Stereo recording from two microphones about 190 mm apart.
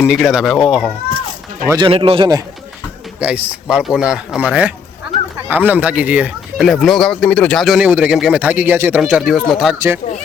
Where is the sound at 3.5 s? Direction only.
5° right (ahead or behind).